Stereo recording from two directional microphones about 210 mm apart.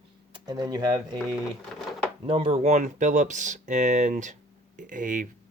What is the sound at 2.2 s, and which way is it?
Speech, 25° right (ahead or behind).